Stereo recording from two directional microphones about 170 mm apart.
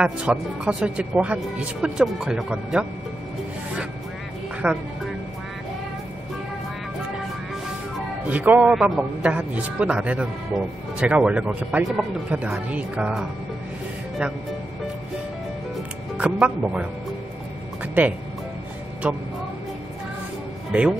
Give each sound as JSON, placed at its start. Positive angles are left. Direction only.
{"t": 0.0, "sound": "speech", "side_deg": -5}
{"t": 4.6, "sound": "a man's voice", "side_deg": -10}
{"t": 8.3, "sound": "a man's voice", "side_deg": -10}
{"t": 16.2, "sound": "speech", "side_deg": -5}
{"t": 18.0, "sound": "a man's voice", "side_deg": -10}
{"t": 20.7, "sound": "speech", "side_deg": -5}